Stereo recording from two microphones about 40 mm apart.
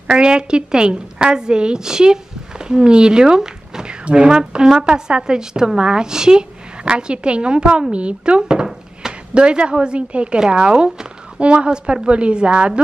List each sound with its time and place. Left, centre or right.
0.1 s speech: right